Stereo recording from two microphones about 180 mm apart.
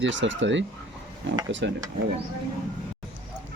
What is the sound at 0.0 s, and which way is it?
Speech, 90° right.